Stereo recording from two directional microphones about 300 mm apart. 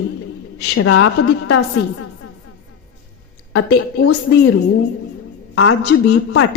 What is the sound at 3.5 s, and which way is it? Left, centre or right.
Speech, left.